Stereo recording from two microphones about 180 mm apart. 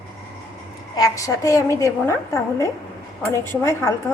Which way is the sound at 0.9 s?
20° left (ahead or behind).